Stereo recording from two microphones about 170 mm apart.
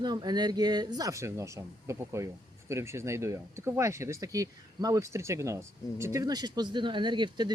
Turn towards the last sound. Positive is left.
turn(degrees=-25)  # may be behind; listen again after turning